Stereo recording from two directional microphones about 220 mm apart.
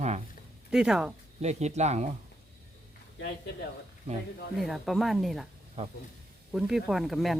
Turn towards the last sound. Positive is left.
turn(degrees=0)  # may be behind; listen again after turning